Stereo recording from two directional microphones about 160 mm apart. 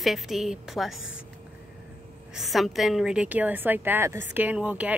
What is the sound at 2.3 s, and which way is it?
A woman's voice, centre (ahead or behind).